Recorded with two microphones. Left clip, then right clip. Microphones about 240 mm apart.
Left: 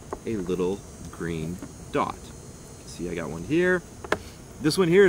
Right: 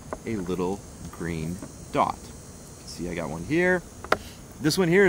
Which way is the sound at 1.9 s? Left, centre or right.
Centre.